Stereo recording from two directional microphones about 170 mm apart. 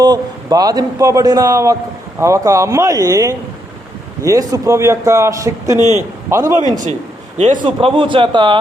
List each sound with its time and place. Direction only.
0.0 s a man's voice: 20° right (ahead or behind)
7.3 s a man's voice: 45° right (ahead or behind)
7.6 s a man's voice: 30° right (ahead or behind)